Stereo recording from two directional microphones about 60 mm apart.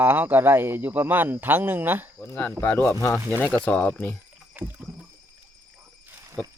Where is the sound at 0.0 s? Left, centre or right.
Right.